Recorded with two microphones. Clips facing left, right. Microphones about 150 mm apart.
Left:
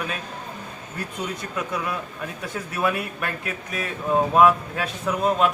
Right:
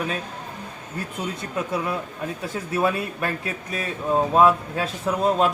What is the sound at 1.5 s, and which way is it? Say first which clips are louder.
A man's voice: right 3 dB; 30° right (ahead or behind).